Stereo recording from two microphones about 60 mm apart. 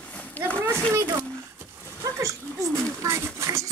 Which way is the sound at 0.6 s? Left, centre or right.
Right.